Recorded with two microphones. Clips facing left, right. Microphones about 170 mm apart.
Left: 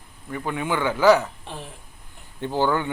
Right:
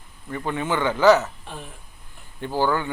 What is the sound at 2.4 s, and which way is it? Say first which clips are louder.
Speech: even; 20° left (ahead or behind).